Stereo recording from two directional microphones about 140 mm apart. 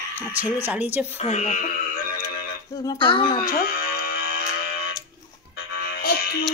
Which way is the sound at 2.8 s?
35° left (ahead or behind).